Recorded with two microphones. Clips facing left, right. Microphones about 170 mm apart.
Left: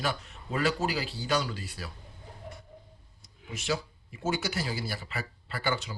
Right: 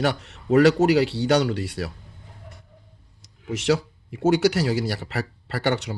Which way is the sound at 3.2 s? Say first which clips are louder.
Right 12 dB; 90° right.